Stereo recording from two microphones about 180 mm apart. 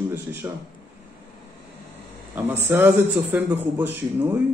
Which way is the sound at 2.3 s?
10° right (ahead or behind).